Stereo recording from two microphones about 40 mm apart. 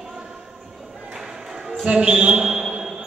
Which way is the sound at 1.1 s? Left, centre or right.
Centre.